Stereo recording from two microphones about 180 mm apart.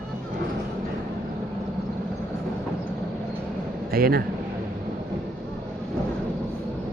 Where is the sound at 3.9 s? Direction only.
55° right (ahead or behind).